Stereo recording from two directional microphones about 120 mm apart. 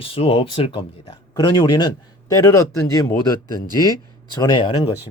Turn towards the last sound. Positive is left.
turn(degrees=45)  # may be behind; listen again after turning